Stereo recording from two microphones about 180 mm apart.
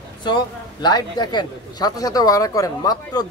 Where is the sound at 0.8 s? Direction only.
25° left (ahead or behind).